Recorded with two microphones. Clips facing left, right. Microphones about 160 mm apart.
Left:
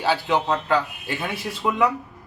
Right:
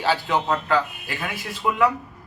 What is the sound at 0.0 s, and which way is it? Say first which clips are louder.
A man's voice: left 1 dB; 15° left (ahead or behind).